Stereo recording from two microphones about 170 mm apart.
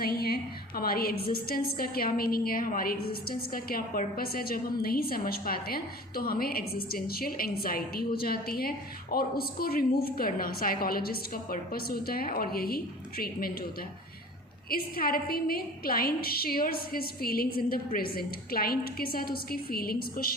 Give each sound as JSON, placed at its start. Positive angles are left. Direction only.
{"t": 0.0, "sound": "a woman's voice", "side_deg": 60}
{"t": 14.7, "sound": "a woman's voice", "side_deg": 60}